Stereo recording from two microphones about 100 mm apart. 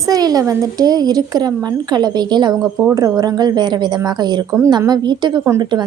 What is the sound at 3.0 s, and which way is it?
Speech, 35° right (ahead or behind).